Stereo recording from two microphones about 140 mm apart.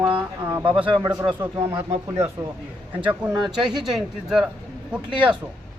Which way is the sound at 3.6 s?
30° right (ahead or behind).